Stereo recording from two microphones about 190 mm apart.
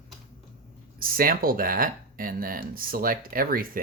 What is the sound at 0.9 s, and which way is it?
Speech, 50° right (ahead or behind).